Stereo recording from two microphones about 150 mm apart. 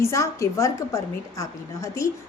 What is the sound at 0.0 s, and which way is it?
A woman's voice, 20° left (ahead or behind).